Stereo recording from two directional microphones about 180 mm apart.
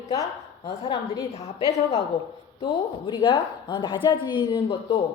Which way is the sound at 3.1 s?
25° left (ahead or behind).